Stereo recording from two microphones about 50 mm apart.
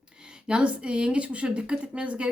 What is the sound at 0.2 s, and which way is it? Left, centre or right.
Speech, centre.